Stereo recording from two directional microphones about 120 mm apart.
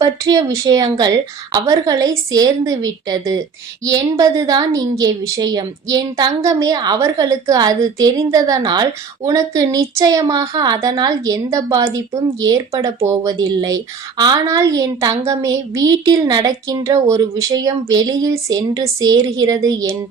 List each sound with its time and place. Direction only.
0.0 s a woman's voice: 30° right (ahead or behind)
13.5 s a woman's voice: 35° right (ahead or behind)
14.4 s speech: 25° right (ahead or behind)